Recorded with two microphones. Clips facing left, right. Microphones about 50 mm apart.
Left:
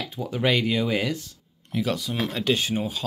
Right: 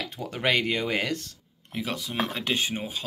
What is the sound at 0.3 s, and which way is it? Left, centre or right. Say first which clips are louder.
Speech: left 2 dB; right.